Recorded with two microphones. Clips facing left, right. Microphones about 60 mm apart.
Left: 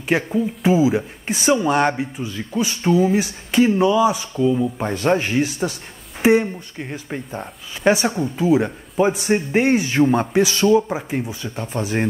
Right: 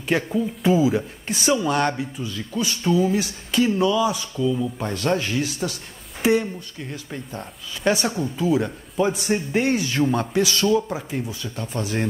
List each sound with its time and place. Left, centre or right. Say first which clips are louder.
0.1 s speech: left 3 dB; centre; by 7.3 s left
7.3 s speech: left 3 dB; left